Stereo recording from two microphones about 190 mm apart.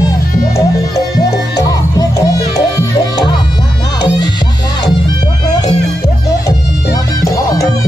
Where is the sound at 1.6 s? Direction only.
20° left (ahead or behind).